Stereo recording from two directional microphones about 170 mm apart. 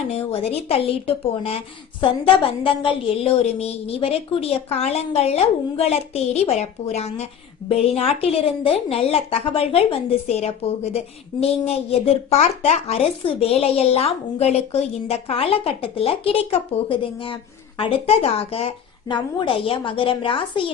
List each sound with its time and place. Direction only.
0.1 s speech: 35° left (ahead or behind)